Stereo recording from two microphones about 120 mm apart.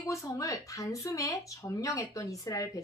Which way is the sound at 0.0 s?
25° left (ahead or behind).